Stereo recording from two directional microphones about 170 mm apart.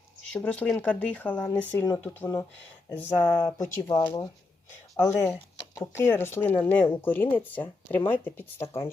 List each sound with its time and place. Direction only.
0.3 s speech: 5° left (ahead or behind)
3.2 s speech: 20° left (ahead or behind)
4.9 s speech: 15° left (ahead or behind)